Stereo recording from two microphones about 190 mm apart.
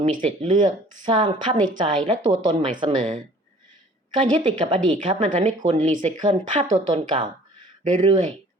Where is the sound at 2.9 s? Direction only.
40° right (ahead or behind).